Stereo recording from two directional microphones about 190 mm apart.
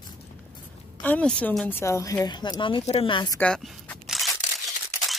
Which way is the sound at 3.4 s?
5° left (ahead or behind).